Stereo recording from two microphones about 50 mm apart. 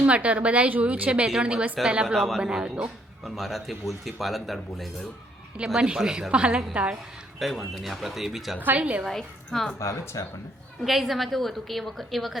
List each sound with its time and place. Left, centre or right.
0.0 s a woman's voice: right
2.1 s speech: centre
2.4 s speech: centre
3.2 s speech: centre
5.6 s a woman's voice: centre
7.3 s speech: centre
8.6 s a woman's voice: right
9.0 s speech: centre
9.8 s speech: left
10.8 s speech: centre